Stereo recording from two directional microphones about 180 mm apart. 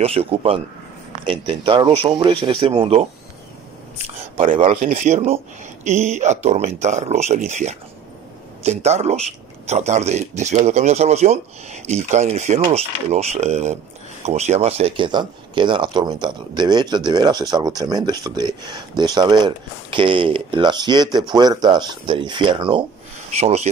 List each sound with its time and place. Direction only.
0.0 s speech: 35° right (ahead or behind)
4.0 s speech: 45° right (ahead or behind)
4.6 s speech: 35° right (ahead or behind)